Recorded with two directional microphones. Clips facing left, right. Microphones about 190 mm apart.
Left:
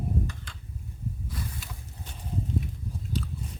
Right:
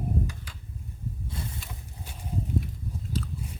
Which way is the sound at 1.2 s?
25° right (ahead or behind).